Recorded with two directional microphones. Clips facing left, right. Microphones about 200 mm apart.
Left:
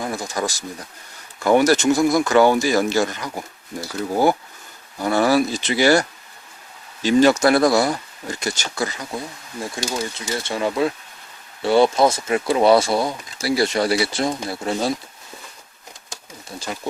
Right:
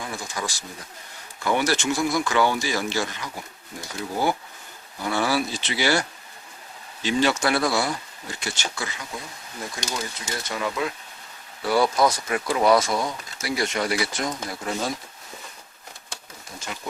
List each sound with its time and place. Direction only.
0.0 s speech: 40° left (ahead or behind)
5.0 s speech: 45° left (ahead or behind)
9.7 s speech: 25° left (ahead or behind)
16.6 s speech: 35° left (ahead or behind)